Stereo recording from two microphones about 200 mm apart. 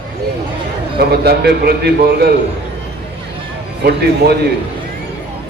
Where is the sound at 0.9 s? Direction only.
50° right (ahead or behind).